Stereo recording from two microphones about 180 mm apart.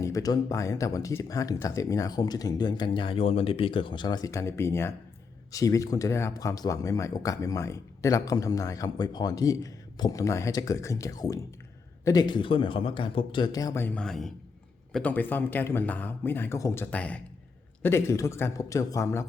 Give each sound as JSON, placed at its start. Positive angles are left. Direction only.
{"t": 0.0, "sound": "speech", "side_deg": 20}